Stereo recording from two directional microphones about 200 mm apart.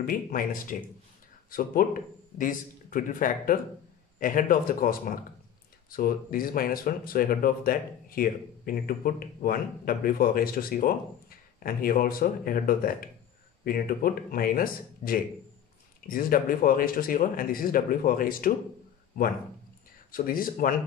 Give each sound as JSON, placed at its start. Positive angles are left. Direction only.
{"t": 0.0, "sound": "speech", "side_deg": 45}
{"t": 20.1, "sound": "speech", "side_deg": 45}